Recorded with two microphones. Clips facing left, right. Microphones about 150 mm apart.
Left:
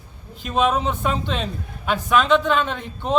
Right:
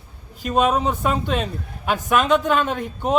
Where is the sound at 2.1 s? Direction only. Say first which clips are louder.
Left 1 dB; 45° right (ahead or behind).